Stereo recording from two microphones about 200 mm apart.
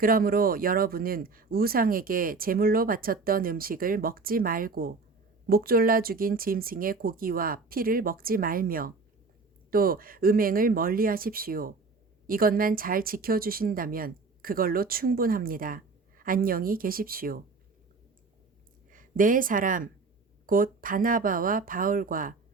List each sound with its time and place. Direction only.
0.0 s speech: 45° right (ahead or behind)
18.9 s speech: 40° right (ahead or behind)